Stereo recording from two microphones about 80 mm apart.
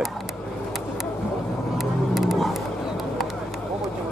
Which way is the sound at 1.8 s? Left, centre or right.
Centre.